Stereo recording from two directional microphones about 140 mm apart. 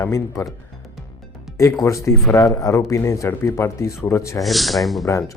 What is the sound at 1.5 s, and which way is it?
Speech, 20° left (ahead or behind).